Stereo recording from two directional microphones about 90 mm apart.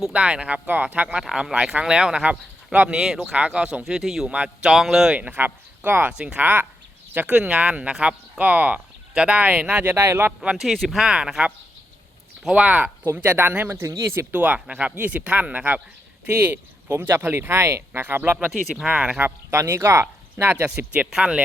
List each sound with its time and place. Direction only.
0.0 s speech: 10° right (ahead or behind)
5.1 s speech: 15° right (ahead or behind)
9.9 s speech: 25° right (ahead or behind)
10.4 s speech: 5° right (ahead or behind)
13.7 s speech: 35° right (ahead or behind)
14.3 s speech: 15° right (ahead or behind)
18.3 s speech: 10° right (ahead or behind)
19.5 s speech: 30° right (ahead or behind)
20.7 s speech: 10° right (ahead or behind)